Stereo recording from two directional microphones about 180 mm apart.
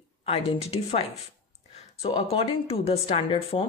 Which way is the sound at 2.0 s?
35° left (ahead or behind).